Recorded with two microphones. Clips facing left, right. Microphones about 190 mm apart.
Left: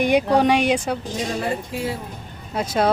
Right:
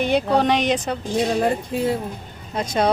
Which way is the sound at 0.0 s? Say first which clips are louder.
Left 2 dB; 10° left (ahead or behind).